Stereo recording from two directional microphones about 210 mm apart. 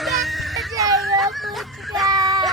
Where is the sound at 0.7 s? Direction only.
15° right (ahead or behind).